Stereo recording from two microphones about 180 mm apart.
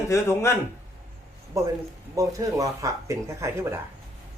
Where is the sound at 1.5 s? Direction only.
15° right (ahead or behind).